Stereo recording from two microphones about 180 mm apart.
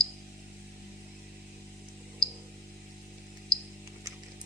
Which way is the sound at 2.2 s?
5° left (ahead or behind).